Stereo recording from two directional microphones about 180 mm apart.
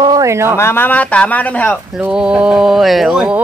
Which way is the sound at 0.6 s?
10° left (ahead or behind).